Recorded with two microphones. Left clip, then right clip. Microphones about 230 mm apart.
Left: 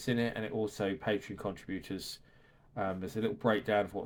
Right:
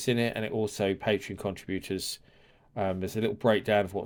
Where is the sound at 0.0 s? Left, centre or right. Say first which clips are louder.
Right 5 dB; right.